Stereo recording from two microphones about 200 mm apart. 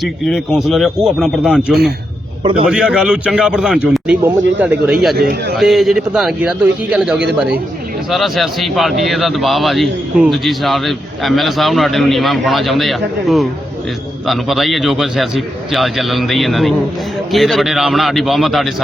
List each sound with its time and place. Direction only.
0.0 s a man's voice: centre (ahead or behind)